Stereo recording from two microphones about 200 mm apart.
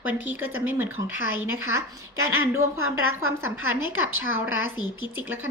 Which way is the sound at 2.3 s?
15° right (ahead or behind).